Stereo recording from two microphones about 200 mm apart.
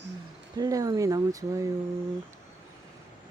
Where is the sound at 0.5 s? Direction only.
20° right (ahead or behind).